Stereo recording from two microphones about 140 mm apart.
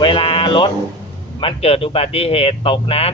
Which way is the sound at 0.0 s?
40° left (ahead or behind).